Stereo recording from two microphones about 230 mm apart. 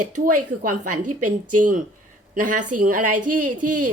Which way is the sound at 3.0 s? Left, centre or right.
Right.